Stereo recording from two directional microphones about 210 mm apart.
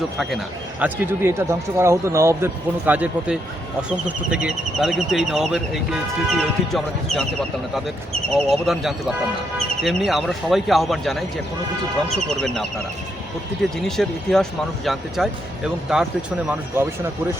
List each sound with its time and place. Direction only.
0.8 s speech: 10° right (ahead or behind)
8.3 s speech: centre (ahead or behind)